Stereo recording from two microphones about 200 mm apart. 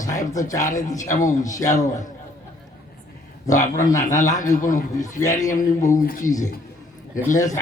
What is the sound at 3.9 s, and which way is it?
A man's voice, 40° left (ahead or behind).